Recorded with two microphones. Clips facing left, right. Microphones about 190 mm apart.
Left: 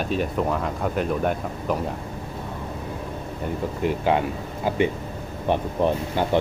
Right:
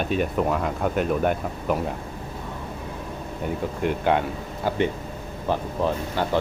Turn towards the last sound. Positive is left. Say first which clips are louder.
# left 2 dB
turn(degrees=20)  # may be behind; listen again after turning